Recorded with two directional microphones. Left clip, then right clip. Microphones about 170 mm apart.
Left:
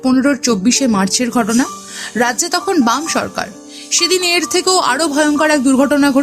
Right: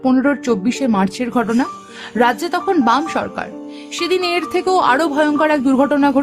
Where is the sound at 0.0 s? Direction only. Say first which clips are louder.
Left 2 dB; 5° left (ahead or behind).